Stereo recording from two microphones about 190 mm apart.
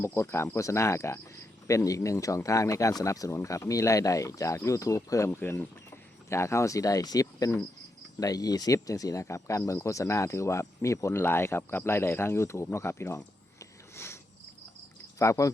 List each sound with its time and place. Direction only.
0.0 s speech: 15° left (ahead or behind)
15.2 s speech: 15° left (ahead or behind)